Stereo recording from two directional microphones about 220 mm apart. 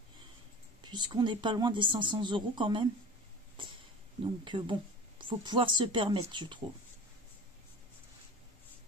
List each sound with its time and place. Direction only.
0.9 s speech: 20° right (ahead or behind)
4.2 s speech: 20° right (ahead or behind)